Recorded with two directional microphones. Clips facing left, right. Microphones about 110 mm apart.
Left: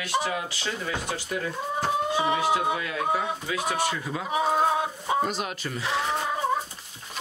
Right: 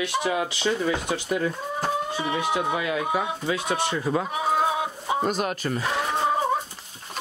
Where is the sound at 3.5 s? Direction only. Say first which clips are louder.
Right 1 dB; 25° right (ahead or behind).